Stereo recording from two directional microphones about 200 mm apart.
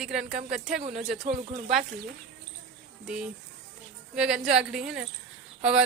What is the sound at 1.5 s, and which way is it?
Speech, 30° right (ahead or behind).